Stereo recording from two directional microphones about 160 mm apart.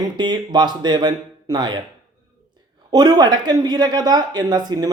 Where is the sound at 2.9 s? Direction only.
25° right (ahead or behind).